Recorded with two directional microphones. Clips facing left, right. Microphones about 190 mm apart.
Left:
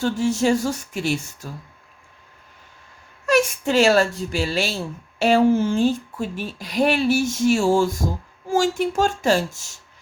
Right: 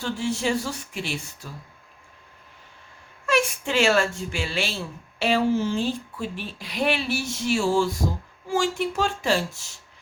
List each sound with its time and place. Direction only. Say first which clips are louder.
0.0 s speech: left 6 dB; 45° left (ahead or behind)
3.2 s speech: left 5 dB; 40° left (ahead or behind)